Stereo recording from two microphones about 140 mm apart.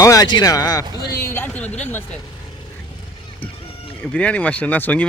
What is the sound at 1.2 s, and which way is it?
Speech, 15° left (ahead or behind).